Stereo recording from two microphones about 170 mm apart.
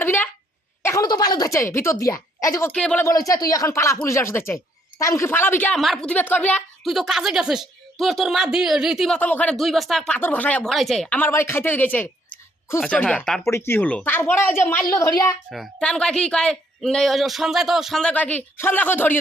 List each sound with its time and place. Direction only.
0.0 s a sound: 10° left (ahead or behind)
0.8 s speech: 15° left (ahead or behind)
3.1 s speech: 20° left (ahead or behind)
6.8 s a man's voice: centre (ahead or behind)
9.1 s a man's voice: 10° left (ahead or behind)
13.4 s speech: 15° left (ahead or behind)
15.4 s a man's voice: centre (ahead or behind)